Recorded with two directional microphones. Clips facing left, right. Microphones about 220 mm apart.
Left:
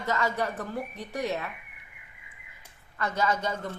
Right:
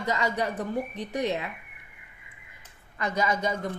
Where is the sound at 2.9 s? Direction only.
15° right (ahead or behind).